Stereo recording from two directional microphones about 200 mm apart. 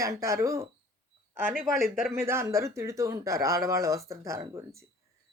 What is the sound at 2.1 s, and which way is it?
Speech, 15° right (ahead or behind).